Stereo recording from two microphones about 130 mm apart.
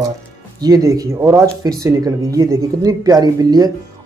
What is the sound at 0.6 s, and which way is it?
Speech, 30° right (ahead or behind).